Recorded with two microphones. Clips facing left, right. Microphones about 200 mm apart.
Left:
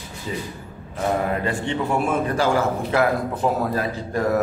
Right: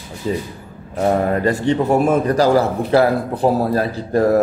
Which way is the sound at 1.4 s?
40° right (ahead or behind).